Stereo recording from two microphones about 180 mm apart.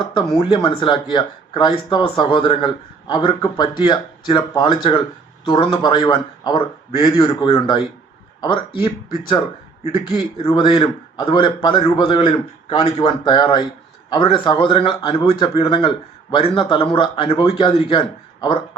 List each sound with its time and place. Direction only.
0.3 s a man's voice: 30° left (ahead or behind)
10.4 s a man's voice: 25° left (ahead or behind)